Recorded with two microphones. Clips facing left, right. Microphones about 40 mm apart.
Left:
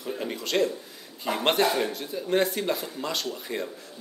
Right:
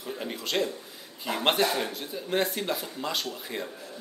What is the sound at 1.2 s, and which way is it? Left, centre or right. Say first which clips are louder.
Speech: left 2 dB; centre.